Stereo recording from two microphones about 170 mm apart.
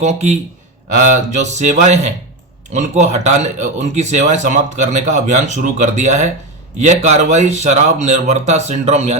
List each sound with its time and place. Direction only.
0.0 s speech: 40° right (ahead or behind)